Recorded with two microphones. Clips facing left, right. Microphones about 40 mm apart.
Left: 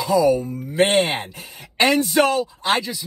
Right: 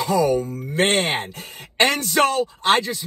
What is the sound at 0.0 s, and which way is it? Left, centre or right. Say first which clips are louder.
Speech: left 2 dB; right.